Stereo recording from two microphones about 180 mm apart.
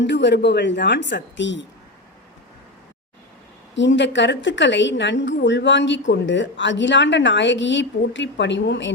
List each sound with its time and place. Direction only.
0.0 s a woman's voice: 75° left (ahead or behind)
3.8 s speech: 85° left